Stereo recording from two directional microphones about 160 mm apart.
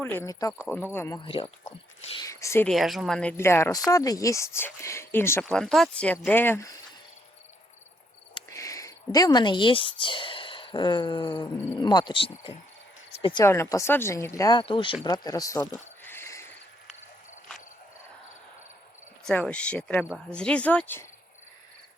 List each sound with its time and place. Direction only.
0.0 s speech: 10° left (ahead or behind)
0.3 s speech: 20° left (ahead or behind)
1.2 s speech: 35° left (ahead or behind)
2.1 s speech: 20° left (ahead or behind)
2.6 s speech: centre (ahead or behind)
3.3 s speech: 15° left (ahead or behind)
5.5 s speech: 5° left (ahead or behind)
8.4 s speech: 20° left (ahead or behind)
13.1 s a sound: 40° left (ahead or behind)
13.3 s speech: 15° left (ahead or behind)
14.6 s speech: 30° left (ahead or behind)
16.0 s cricket: 15° left (ahead or behind)
19.2 s speech: 5° left (ahead or behind)